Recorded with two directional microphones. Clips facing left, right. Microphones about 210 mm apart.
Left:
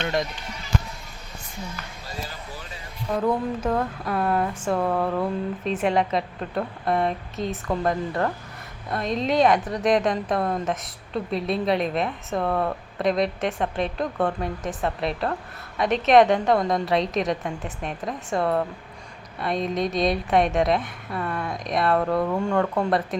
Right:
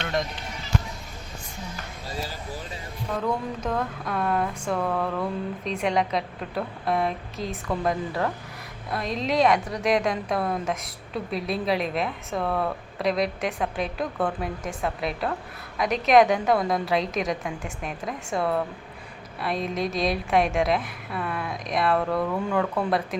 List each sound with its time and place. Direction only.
3.6 s a woman's voice: 5° left (ahead or behind)
4.8 s a sound: 20° left (ahead or behind)
5.6 s a woman's voice: 5° left (ahead or behind)